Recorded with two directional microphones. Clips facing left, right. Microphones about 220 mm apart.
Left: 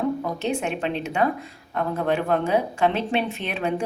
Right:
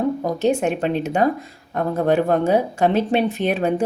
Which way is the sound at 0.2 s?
40° right (ahead or behind).